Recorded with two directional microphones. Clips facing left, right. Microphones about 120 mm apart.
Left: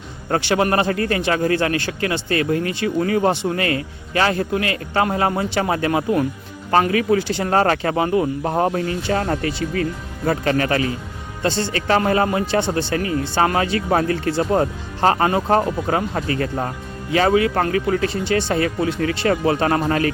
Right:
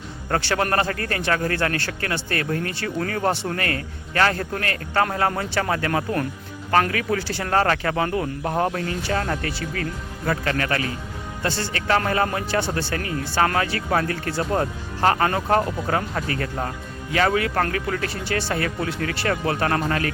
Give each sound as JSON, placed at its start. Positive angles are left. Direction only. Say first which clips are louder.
{"t": 0.3, "sound": "a man's voice", "louder": "left 4 dB", "side_deg": 20}